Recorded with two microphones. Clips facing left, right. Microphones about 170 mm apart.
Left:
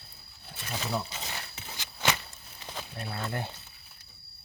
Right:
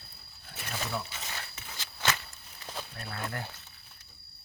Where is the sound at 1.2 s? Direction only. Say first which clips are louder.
Left 2 dB; 30° left (ahead or behind).